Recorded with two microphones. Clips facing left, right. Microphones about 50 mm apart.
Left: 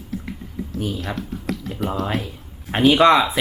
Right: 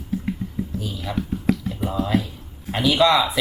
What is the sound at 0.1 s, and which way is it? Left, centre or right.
Typing, centre.